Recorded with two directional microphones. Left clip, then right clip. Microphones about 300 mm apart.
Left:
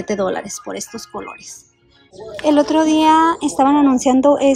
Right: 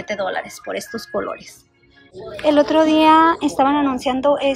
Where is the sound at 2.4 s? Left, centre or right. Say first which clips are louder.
Even; centre.